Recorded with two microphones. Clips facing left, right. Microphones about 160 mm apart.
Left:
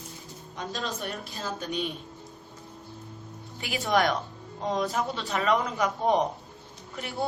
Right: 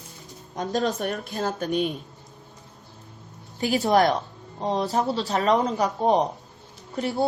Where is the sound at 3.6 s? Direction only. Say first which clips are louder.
Right 6 dB; 35° right (ahead or behind).